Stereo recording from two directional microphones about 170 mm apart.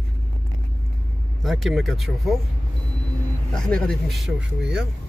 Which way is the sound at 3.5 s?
5° left (ahead or behind).